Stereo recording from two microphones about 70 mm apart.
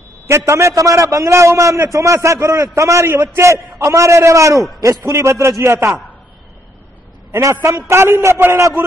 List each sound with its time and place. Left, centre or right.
0.5 s a man's voice: right
7.3 s a man's voice: right